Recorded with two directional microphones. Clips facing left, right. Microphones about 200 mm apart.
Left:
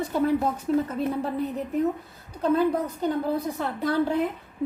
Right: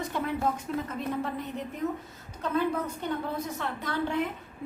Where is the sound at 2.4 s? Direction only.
35° left (ahead or behind).